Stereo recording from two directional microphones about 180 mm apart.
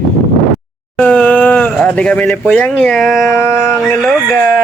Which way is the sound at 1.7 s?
5° left (ahead or behind).